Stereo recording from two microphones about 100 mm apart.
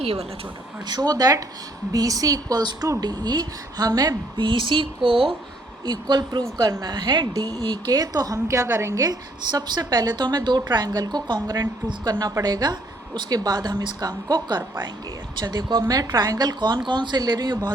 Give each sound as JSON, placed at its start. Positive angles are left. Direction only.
{"t": 0.0, "sound": "speech", "side_deg": -85}
{"t": 0.9, "sound": "speech", "side_deg": -40}
{"t": 5.8, "sound": "speech", "side_deg": -45}
{"t": 7.9, "sound": "speech", "side_deg": -40}